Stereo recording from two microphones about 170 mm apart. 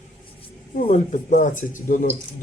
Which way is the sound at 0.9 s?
45° left (ahead or behind).